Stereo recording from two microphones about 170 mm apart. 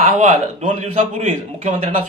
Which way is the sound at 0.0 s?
45° right (ahead or behind).